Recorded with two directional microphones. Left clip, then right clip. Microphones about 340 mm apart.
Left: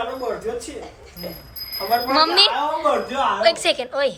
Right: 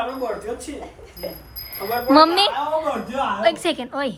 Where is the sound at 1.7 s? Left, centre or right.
Centre.